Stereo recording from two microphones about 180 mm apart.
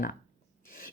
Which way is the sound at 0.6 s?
50° left (ahead or behind).